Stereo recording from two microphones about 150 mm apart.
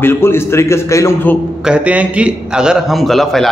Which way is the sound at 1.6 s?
10° right (ahead or behind).